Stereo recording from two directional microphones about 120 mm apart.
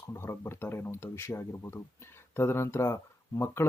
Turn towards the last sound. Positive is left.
turn(degrees=20)  # may be behind; listen again after turning